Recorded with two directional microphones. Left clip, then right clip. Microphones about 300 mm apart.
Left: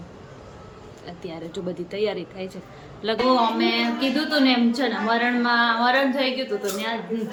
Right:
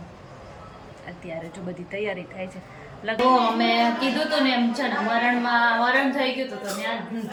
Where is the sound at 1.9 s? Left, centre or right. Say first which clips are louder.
Left 2 dB; centre.